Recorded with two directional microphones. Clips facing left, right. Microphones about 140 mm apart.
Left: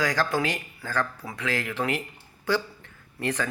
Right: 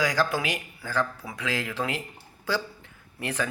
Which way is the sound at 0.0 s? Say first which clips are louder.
Even; 10° right (ahead or behind).